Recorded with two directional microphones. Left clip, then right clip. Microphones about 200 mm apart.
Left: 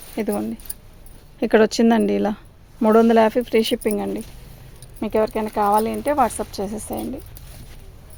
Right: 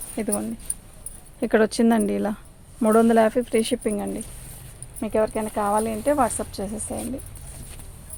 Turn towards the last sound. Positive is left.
turn(degrees=50)  # may be behind; listen again after turning